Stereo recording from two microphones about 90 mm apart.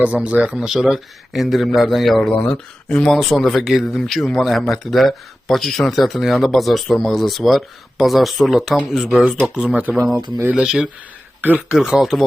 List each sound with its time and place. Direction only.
0.0 s a man's voice: 15° right (ahead or behind)
10.2 s speech: 45° right (ahead or behind)
10.5 s speech: 5° right (ahead or behind)
11.3 s speech: 20° right (ahead or behind)
11.7 s a man's voice: 5° right (ahead or behind)